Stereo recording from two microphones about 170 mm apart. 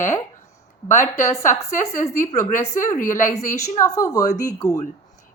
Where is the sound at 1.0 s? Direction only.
15° left (ahead or behind).